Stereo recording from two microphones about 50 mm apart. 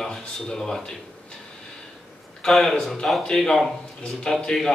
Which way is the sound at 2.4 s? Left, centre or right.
Centre.